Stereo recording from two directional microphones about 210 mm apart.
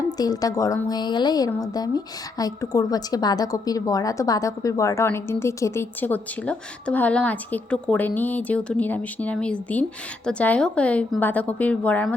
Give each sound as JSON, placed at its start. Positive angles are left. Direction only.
{"t": 0.2, "sound": "a woman's voice", "side_deg": 15}